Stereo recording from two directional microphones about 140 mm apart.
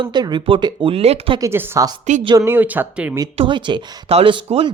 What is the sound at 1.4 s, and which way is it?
Speech, 15° right (ahead or behind).